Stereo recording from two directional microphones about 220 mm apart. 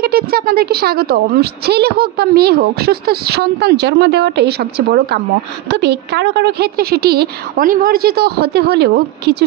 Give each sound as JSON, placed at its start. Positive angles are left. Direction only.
{"t": 0.0, "sound": "a woman's voice", "side_deg": -45}